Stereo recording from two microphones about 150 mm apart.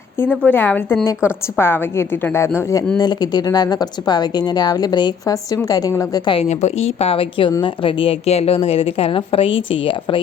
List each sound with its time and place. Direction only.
0.2 s a woman's voice: 10° left (ahead or behind); by 6.4 s 30° left (ahead or behind)
6.4 s a woman's voice: 45° left (ahead or behind)